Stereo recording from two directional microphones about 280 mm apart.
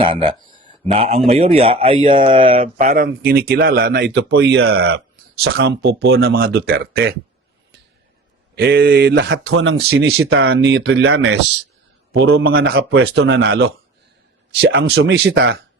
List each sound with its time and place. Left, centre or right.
0.0 s a man's voice: centre; by 7.2 s right
8.5 s speech: right